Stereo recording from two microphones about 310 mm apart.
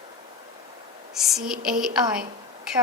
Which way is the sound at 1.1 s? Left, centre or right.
Centre.